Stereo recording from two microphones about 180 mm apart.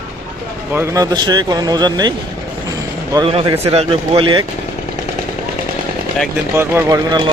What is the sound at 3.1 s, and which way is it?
Speech, 30° right (ahead or behind).